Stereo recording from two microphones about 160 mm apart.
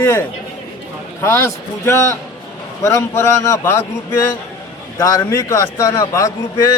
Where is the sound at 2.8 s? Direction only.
20° left (ahead or behind).